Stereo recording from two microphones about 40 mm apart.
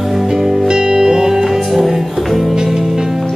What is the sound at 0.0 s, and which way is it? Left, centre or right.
Music, centre.